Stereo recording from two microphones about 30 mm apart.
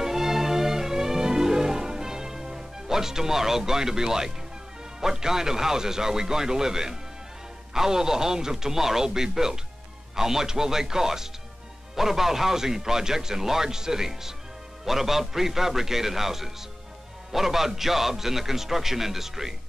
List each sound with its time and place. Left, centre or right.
0.0 s music: centre
5.0 s speech: centre